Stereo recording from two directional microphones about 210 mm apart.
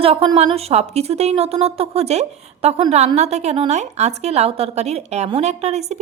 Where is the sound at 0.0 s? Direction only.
25° right (ahead or behind).